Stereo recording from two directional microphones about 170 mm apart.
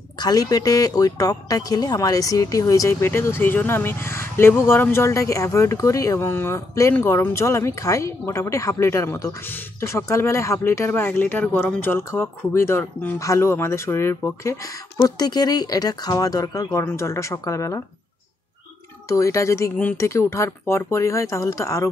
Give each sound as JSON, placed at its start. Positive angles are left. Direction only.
{"t": 0.2, "sound": "speech", "side_deg": 20}
{"t": 19.0, "sound": "speech", "side_deg": 20}